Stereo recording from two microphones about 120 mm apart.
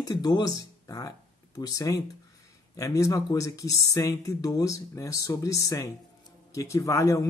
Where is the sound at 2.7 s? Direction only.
25° left (ahead or behind).